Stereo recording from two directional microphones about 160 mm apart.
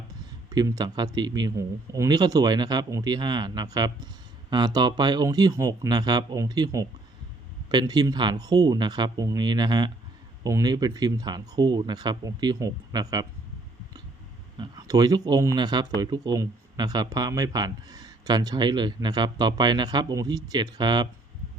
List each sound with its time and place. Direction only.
0.5 s a man's voice: 25° right (ahead or behind)
14.6 s a man's voice: 25° right (ahead or behind)